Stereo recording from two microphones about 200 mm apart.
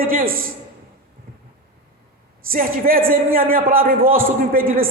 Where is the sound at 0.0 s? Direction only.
45° right (ahead or behind).